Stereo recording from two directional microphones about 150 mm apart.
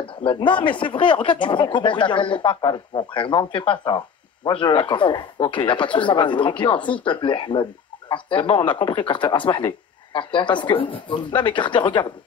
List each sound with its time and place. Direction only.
0.0 s speech: 35° left (ahead or behind)